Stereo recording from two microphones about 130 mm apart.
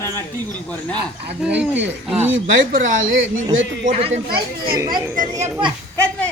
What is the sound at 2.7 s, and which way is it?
Speech, 90° right.